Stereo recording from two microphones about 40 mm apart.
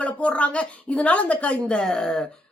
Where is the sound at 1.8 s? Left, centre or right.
Centre.